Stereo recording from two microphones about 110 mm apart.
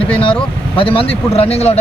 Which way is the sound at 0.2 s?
55° left (ahead or behind).